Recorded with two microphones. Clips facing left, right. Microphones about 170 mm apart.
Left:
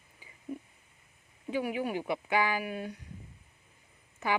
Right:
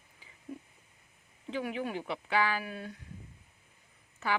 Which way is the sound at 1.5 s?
10° left (ahead or behind).